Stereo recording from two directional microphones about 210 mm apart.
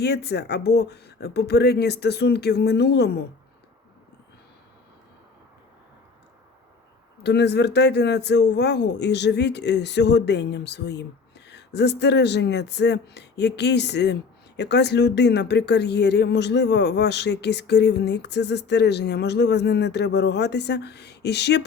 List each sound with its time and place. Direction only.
0.0 s speech: 50° left (ahead or behind)
7.2 s speech: 55° left (ahead or behind)